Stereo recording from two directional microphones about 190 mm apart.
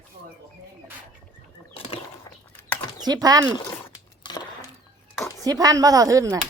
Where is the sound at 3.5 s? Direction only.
20° left (ahead or behind).